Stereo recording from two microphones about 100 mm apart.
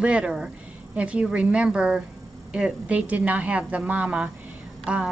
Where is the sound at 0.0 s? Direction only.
10° right (ahead or behind).